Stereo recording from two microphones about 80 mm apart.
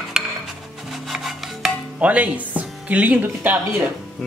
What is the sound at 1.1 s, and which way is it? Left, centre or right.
Rub, centre.